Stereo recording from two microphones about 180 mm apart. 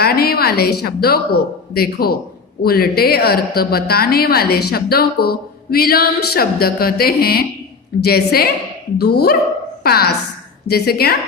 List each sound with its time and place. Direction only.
0.0 s a woman's voice: 60° left (ahead or behind)